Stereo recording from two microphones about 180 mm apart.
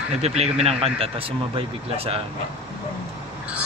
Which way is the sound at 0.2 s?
35° right (ahead or behind).